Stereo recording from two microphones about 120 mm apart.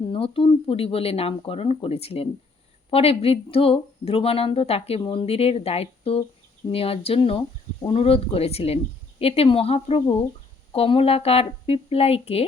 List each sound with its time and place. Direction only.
0.1 s speech: 50° left (ahead or behind)